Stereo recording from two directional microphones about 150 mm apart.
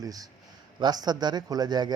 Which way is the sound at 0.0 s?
25° right (ahead or behind).